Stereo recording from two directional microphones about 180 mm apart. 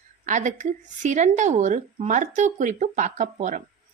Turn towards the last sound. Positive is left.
turn(degrees=-45)  # may be behind; listen again after turning